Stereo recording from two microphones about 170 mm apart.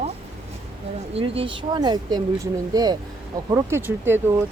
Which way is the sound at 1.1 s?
30° right (ahead or behind).